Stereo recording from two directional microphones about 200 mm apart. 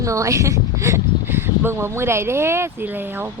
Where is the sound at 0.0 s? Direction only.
15° right (ahead or behind).